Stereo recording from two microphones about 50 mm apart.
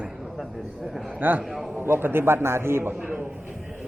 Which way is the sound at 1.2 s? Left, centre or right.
Right.